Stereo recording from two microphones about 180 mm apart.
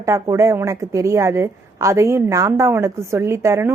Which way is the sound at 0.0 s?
15° right (ahead or behind).